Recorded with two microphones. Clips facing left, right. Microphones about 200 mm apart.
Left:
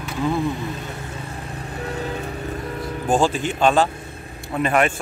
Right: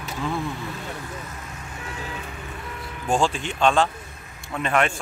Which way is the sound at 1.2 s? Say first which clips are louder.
Left 6 dB; 35° left (ahead or behind).